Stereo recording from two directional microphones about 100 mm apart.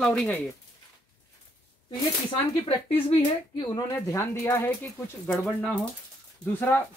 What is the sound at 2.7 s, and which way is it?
Speech, 65° left (ahead or behind).